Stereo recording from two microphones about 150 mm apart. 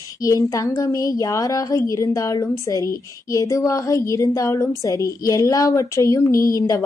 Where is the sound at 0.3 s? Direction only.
20° left (ahead or behind).